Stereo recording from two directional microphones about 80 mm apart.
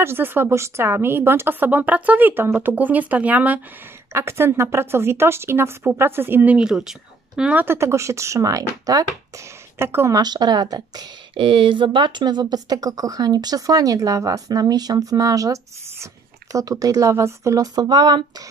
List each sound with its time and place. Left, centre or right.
0.0 s a woman's voice: right
4.1 s speech: right
6.5 s speech: centre
7.5 s speech: right
9.8 s speech: right
10.1 s a woman's voice: right
11.3 s speech: right
17.7 s a woman's voice: right